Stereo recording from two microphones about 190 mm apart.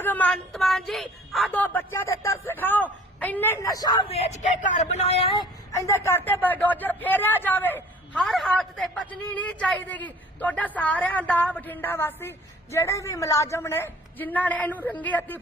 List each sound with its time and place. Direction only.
0.0 s a man's voice: 10° left (ahead or behind)
4.1 s speech: 35° left (ahead or behind)
5.7 s a man's voice: 15° left (ahead or behind)